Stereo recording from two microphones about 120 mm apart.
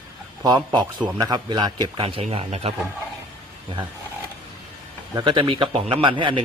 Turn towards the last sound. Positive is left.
turn(degrees=-45)  # may be behind; listen again after turning